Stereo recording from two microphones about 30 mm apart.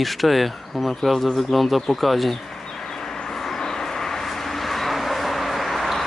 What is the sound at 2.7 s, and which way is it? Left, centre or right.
Vehicle, centre.